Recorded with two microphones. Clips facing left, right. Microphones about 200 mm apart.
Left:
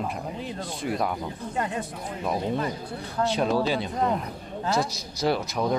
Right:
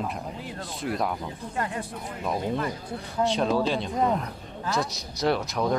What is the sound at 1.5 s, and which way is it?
Speech, 20° left (ahead or behind).